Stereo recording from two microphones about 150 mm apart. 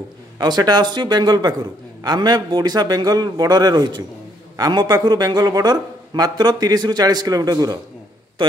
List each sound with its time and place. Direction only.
0.4 s a man's voice: 25° right (ahead or behind)